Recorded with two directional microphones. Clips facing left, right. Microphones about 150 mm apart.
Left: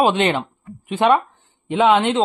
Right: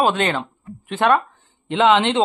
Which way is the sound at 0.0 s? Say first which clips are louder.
Left 2 dB; 45° right (ahead or behind).